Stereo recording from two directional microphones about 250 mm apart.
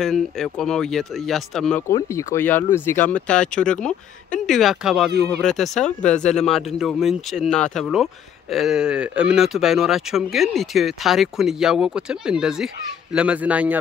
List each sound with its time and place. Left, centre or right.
0.0 s speech: centre
5.1 s speech: right
5.4 s speech: centre